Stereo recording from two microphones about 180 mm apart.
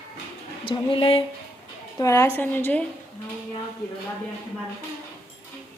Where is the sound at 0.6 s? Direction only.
30° left (ahead or behind).